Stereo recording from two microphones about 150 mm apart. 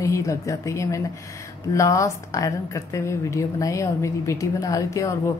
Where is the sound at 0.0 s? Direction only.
20° left (ahead or behind).